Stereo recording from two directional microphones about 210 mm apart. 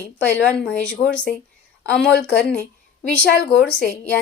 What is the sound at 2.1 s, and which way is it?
Speech, 50° left (ahead or behind).